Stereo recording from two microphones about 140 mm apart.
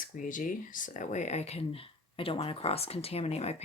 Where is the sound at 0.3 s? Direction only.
70° left (ahead or behind).